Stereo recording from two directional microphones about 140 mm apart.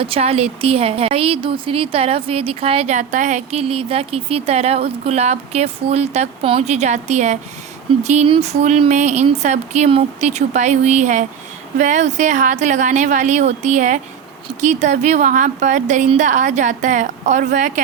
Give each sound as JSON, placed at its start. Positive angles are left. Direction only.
{"t": 0.0, "sound": "a woman's voice", "side_deg": -45}